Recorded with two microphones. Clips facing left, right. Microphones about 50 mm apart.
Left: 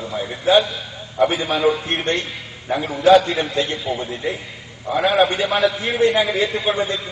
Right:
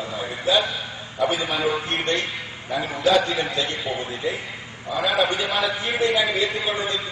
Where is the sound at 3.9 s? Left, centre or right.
Centre.